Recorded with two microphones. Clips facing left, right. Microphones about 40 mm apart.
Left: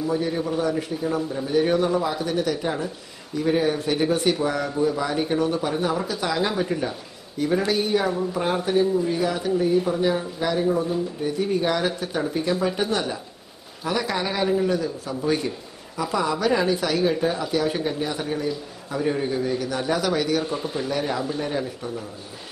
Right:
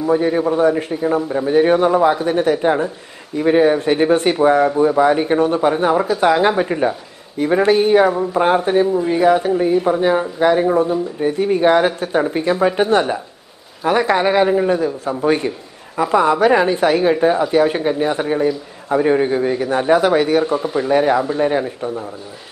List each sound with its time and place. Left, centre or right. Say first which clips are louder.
0.0 s speech: right 8 dB; right